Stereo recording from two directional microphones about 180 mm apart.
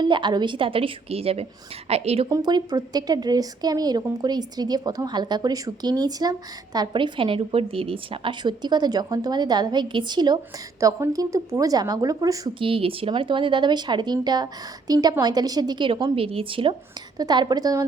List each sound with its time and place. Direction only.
0.0 s a woman's voice: 25° right (ahead or behind)
2.3 s speech: 20° right (ahead or behind)